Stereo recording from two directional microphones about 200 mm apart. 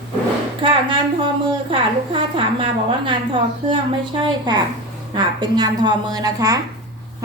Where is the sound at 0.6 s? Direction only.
25° right (ahead or behind).